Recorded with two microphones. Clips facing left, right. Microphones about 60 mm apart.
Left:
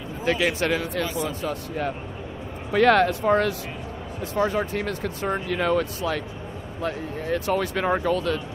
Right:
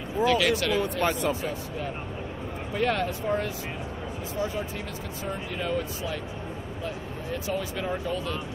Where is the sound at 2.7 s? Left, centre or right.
Left.